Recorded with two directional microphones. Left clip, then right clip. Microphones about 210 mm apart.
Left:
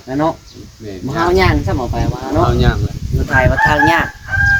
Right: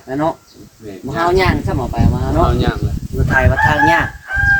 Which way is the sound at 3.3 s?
15° left (ahead or behind).